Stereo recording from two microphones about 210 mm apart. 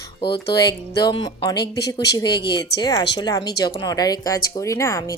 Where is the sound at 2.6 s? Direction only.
20° left (ahead or behind).